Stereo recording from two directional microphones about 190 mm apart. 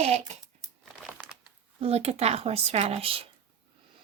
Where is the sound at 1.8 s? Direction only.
35° right (ahead or behind).